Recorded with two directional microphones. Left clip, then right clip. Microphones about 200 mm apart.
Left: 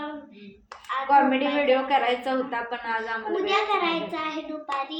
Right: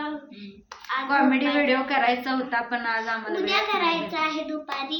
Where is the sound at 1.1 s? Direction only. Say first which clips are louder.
Left 2 dB; 5° right (ahead or behind).